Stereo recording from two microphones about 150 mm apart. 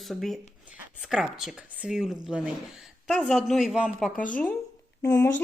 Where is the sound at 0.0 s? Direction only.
Centre (ahead or behind).